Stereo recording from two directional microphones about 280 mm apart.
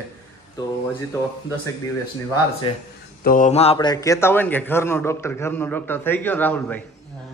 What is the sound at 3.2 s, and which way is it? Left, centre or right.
A man's voice, left.